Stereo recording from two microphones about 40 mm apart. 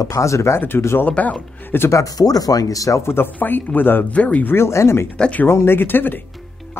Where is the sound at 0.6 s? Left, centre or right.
Left.